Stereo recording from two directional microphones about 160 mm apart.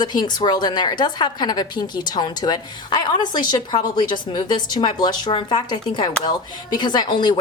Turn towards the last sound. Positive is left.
turn(degrees=25)  # may be behind; listen again after turning